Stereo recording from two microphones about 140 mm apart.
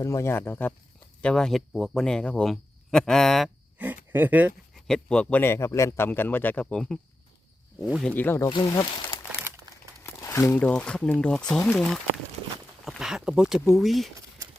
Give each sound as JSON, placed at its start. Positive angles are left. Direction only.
{"t": 0.0, "sound": "a man's voice", "side_deg": 20}
{"t": 3.8, "sound": "a sound", "side_deg": -15}
{"t": 4.7, "sound": "a man's voice", "side_deg": 5}
{"t": 8.0, "sound": "a man's voice", "side_deg": 10}
{"t": 8.6, "sound": "speech", "side_deg": 30}
{"t": 10.0, "sound": "crumpling", "side_deg": 20}
{"t": 10.6, "sound": "a man's voice", "side_deg": 10}
{"t": 12.8, "sound": "speech", "side_deg": 0}